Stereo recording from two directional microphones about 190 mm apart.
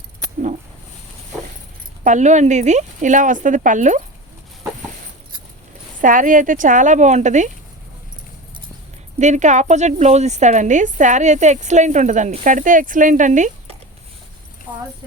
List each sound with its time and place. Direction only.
2.0 s speech: 40° right (ahead or behind)
6.0 s speech: 45° right (ahead or behind)
9.1 s speech: 40° right (ahead or behind)